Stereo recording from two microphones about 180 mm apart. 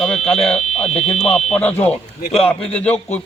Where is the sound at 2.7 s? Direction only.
10° left (ahead or behind).